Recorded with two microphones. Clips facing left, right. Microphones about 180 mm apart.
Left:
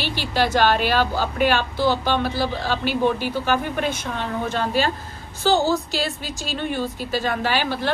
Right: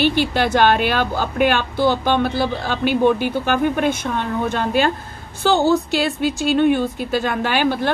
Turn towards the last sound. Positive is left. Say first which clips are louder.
# right 4 dB
turn(degrees=-50)  # may be behind; listen again after turning